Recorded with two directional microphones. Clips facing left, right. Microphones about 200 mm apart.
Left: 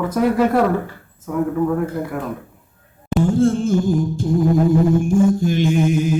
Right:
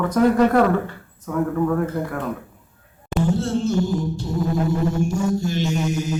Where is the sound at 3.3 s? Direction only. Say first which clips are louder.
Left 6 dB; 50° left (ahead or behind).